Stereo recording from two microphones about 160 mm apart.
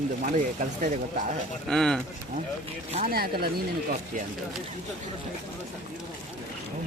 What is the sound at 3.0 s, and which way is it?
Speech, 70° right (ahead or behind).